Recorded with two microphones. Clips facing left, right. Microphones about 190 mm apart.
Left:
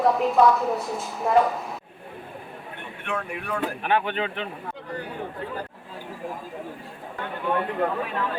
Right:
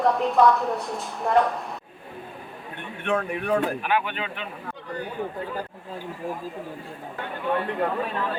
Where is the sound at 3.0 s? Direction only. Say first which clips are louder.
Right 6 dB; 20° right (ahead or behind).